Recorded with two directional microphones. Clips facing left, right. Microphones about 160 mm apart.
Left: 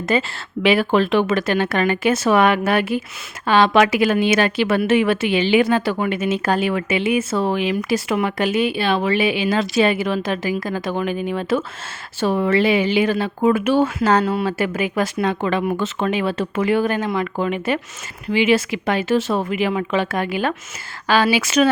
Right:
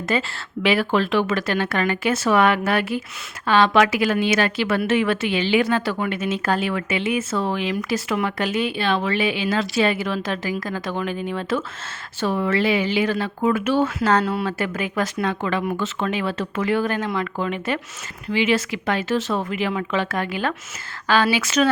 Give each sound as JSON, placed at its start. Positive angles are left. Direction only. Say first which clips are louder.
{"t": 0.1, "sound": "speech", "louder": "left 3 dB", "side_deg": 15}